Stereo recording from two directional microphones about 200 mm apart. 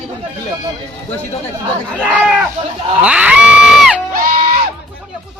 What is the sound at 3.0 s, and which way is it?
Crowd, 5° right (ahead or behind).